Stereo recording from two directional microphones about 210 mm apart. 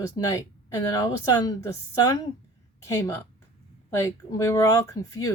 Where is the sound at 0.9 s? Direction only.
15° left (ahead or behind).